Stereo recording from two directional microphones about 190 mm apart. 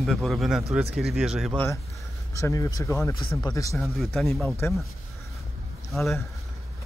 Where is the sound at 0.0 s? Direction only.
Centre (ahead or behind).